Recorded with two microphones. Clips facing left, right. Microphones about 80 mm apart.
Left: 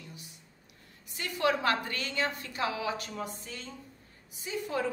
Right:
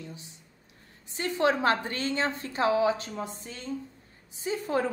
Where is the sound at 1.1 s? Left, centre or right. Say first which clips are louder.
Right 4 dB; right.